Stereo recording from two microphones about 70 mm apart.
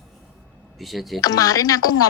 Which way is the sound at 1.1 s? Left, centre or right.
Left.